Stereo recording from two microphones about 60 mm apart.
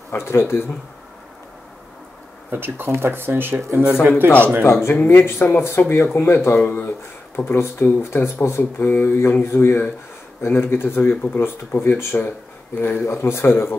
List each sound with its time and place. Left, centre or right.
0.1 s speech: left
2.5 s speech: right
3.5 s speech: right
4.2 s speech: right
5.0 s speech: left
13.1 s speech: left